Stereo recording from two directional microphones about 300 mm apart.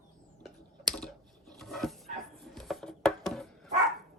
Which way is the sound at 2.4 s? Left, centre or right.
Centre.